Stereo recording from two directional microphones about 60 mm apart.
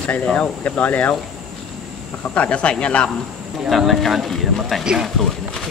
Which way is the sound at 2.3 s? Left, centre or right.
Left.